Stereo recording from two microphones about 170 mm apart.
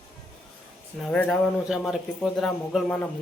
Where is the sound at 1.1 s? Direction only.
Centre (ahead or behind).